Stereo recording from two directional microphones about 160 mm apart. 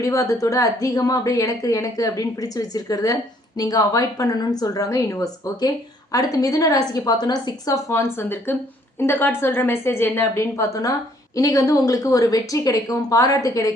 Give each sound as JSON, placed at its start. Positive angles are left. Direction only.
{"t": 0.0, "sound": "a woman's voice", "side_deg": 20}